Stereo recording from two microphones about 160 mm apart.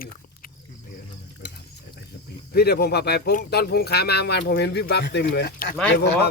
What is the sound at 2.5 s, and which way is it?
Speech, 80° left.